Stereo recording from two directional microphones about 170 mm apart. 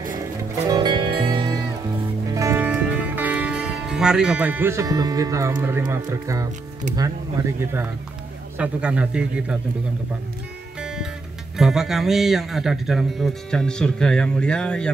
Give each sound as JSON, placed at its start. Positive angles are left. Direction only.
{"t": 0.7, "sound": "music", "side_deg": -25}
{"t": 2.3, "sound": "music", "side_deg": -15}
{"t": 8.5, "sound": "a man's voice", "side_deg": -5}
{"t": 10.8, "sound": "music", "side_deg": -5}
{"t": 11.5, "sound": "speech", "side_deg": 0}